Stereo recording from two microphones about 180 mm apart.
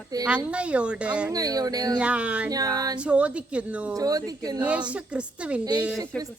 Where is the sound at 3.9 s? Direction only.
20° right (ahead or behind).